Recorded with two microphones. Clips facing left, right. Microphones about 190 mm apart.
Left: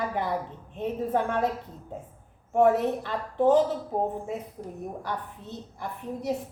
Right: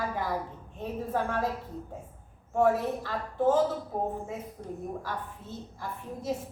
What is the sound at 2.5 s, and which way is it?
Speech, 20° left (ahead or behind).